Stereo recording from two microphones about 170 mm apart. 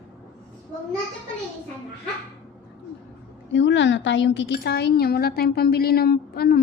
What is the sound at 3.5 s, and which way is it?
A woman's voice, 90° left.